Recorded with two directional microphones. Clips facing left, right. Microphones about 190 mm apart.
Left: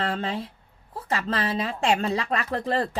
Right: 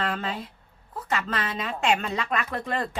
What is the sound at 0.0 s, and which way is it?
Speech, 30° left (ahead or behind).